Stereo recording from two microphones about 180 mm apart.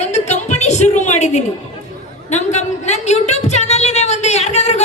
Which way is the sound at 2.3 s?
40° left (ahead or behind).